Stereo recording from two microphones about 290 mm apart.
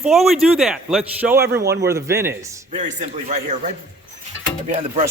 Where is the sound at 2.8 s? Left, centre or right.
Right.